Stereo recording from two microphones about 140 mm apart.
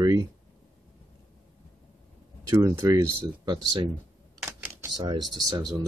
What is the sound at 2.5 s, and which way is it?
Speech, 20° right (ahead or behind).